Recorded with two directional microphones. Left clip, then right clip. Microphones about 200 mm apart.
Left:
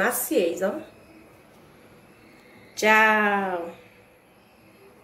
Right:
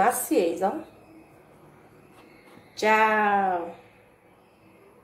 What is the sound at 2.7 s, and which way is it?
Speech, 5° left (ahead or behind).